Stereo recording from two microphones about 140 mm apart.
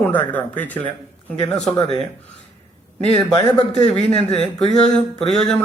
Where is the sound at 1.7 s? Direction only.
35° left (ahead or behind).